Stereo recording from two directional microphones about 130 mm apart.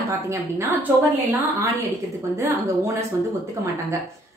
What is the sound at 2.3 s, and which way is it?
Speech, 25° right (ahead or behind).